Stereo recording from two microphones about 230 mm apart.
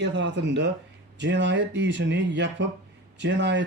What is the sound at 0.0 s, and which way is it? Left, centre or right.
A man's voice, right.